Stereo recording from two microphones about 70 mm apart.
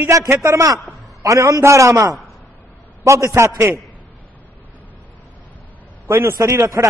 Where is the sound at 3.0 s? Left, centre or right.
Right.